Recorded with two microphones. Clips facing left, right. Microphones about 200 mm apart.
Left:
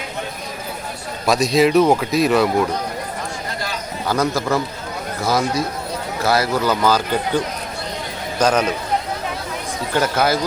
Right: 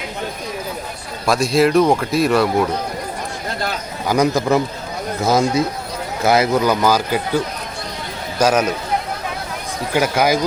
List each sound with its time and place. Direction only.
1.3 s speech: centre (ahead or behind)
4.0 s speech: 15° right (ahead or behind)
9.9 s speech: 10° right (ahead or behind)